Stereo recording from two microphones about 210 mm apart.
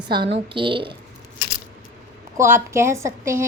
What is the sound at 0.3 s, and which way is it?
Speech, 25° right (ahead or behind).